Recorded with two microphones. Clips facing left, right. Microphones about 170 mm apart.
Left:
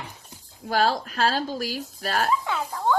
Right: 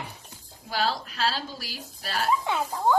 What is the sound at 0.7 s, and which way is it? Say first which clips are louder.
Speech: left 5 dB; 50° left (ahead or behind).